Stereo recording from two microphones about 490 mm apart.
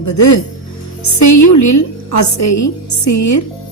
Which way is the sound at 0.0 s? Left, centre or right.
Left.